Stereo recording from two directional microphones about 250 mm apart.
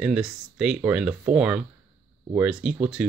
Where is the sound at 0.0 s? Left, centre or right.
Centre.